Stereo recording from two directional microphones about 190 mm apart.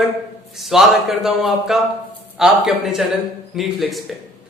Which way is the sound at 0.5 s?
Centre (ahead or behind).